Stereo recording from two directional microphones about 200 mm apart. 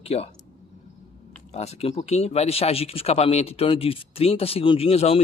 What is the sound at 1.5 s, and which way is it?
Speech, 30° left (ahead or behind).